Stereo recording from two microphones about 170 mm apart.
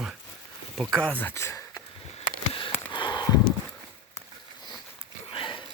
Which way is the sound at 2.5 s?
30° left (ahead or behind).